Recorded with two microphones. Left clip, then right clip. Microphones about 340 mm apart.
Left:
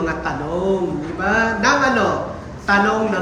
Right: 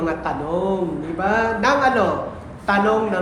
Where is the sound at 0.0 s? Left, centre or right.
Centre.